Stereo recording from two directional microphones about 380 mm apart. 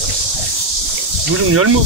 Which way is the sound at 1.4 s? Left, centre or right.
Right.